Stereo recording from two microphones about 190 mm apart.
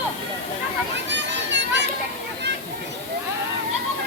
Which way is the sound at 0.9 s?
70° right (ahead or behind).